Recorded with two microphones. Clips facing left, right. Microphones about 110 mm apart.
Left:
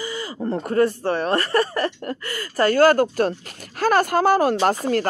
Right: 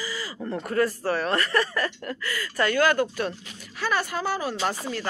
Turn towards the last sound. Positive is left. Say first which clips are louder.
# left 9 dB
turn(degrees=50)  # may be behind; listen again after turning